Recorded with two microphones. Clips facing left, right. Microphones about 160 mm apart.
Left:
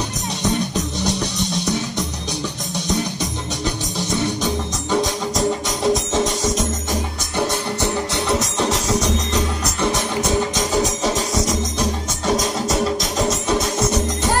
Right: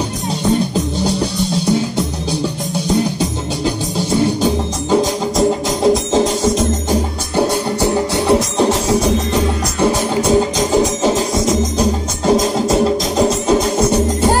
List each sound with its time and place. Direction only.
0.4 s music: 30° right (ahead or behind)